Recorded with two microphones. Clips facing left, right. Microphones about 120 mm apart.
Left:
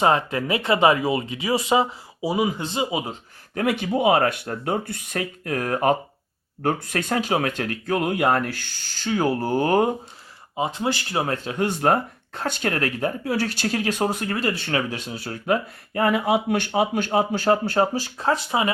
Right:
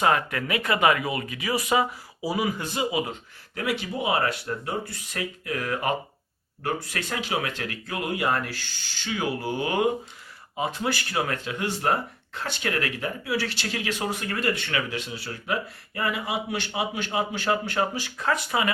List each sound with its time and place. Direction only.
0.0 s speech: 25° left (ahead or behind)
3.5 s speech: 50° left (ahead or behind)
10.6 s speech: 25° left (ahead or behind)
11.4 s speech: 45° left (ahead or behind); by 18.7 s 25° left (ahead or behind)